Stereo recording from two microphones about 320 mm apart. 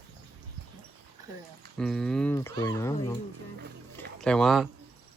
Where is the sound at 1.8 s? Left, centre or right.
Centre.